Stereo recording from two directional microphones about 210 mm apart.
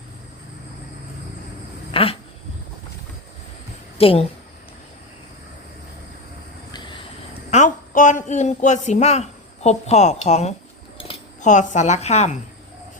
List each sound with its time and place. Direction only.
1.9 s a sound: 25° left (ahead or behind)
3.9 s a woman's voice: 25° left (ahead or behind)
7.5 s a man's voice: 35° left (ahead or behind)